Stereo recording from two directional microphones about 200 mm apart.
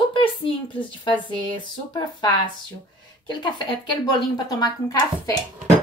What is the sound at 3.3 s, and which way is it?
Speech, 20° left (ahead or behind).